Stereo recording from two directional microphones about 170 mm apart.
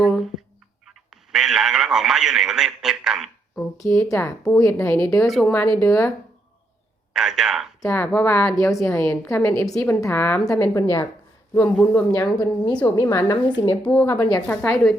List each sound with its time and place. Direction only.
0.0 s fowl: centre (ahead or behind)
1.1 s a man's voice: centre (ahead or behind)
3.8 s a woman's voice: 20° left (ahead or behind)
7.1 s a man's voice: 5° right (ahead or behind)
7.8 s a woman's voice: 15° left (ahead or behind)
13.8 s a woman's voice: 10° left (ahead or behind)